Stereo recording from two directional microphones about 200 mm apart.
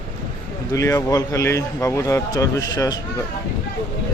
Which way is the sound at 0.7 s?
15° left (ahead or behind).